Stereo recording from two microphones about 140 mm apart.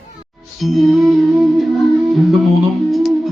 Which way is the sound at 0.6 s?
Centre (ahead or behind).